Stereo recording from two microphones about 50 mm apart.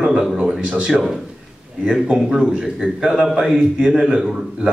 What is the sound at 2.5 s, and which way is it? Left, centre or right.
A man's voice, centre.